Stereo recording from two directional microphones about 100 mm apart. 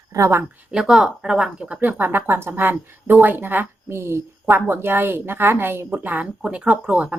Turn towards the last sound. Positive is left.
turn(degrees=-10)  # may be behind; listen again after turning